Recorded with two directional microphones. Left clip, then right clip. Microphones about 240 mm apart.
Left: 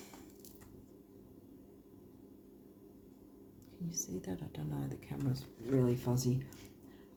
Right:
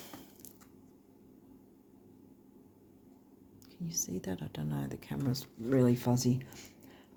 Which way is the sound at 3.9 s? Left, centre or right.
Right.